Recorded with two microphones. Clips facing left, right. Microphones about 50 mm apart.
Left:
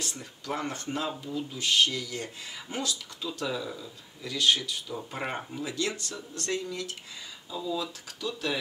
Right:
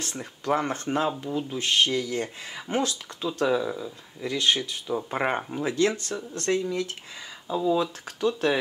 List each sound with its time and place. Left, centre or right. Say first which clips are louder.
0.1 s speech: right 9 dB; right